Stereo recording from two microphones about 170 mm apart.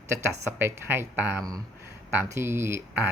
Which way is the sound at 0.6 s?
10° right (ahead or behind).